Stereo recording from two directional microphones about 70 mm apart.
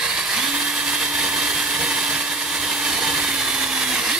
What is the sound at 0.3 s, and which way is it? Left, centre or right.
Blender, centre.